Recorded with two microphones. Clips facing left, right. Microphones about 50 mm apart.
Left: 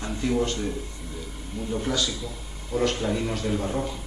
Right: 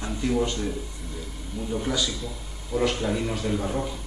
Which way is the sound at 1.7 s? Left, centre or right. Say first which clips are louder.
Even; centre.